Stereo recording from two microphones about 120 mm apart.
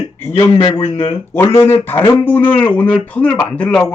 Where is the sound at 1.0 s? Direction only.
20° left (ahead or behind).